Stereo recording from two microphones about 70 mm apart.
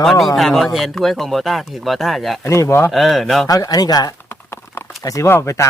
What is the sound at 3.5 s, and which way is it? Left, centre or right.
Speech, left.